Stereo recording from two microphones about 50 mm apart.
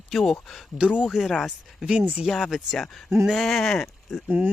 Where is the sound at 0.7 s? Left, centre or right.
Right.